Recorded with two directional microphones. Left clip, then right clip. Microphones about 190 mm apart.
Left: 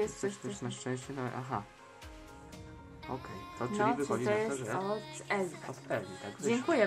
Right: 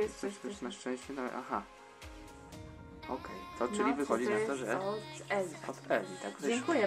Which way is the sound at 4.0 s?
20° right (ahead or behind).